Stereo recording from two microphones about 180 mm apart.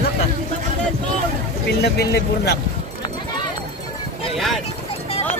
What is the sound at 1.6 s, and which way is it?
Speech, 65° left (ahead or behind).